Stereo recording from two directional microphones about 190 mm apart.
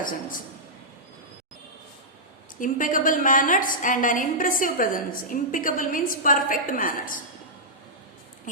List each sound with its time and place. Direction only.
0.0 s a woman's voice: 45° left (ahead or behind)
2.6 s a woman's voice: 45° left (ahead or behind)